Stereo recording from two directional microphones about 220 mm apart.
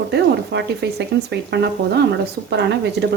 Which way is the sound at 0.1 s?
50° right (ahead or behind).